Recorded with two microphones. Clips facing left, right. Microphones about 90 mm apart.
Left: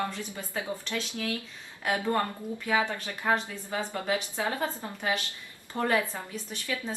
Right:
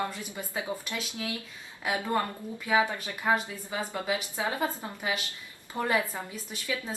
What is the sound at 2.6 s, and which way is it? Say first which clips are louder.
A woman's voice: right 2 dB; 15° right (ahead or behind).